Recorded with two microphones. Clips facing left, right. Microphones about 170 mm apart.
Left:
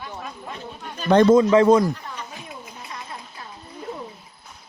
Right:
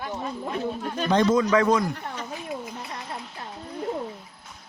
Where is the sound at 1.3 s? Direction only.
25° left (ahead or behind).